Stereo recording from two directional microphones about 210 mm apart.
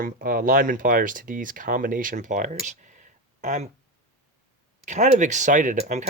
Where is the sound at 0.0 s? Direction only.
45° right (ahead or behind).